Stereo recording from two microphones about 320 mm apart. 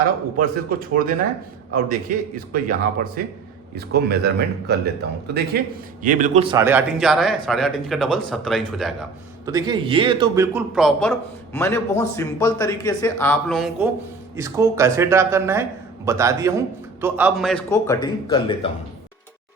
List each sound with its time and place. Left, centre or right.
0.3 s a man's voice: right; by 9.0 s centre
9.5 s a man's voice: centre